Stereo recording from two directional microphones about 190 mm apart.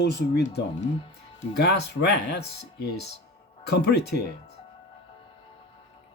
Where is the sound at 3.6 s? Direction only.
60° left (ahead or behind).